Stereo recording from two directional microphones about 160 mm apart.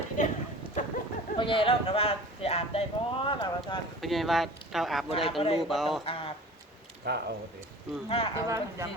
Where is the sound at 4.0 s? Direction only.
Centre (ahead or behind).